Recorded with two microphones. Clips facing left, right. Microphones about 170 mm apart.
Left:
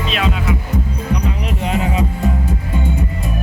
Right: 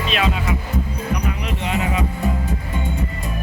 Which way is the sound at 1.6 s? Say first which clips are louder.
Left 4 dB; 35° left (ahead or behind).